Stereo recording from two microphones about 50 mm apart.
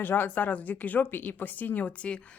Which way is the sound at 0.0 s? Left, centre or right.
Left.